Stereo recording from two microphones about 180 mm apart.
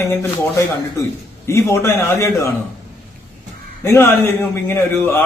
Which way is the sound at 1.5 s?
15° left (ahead or behind).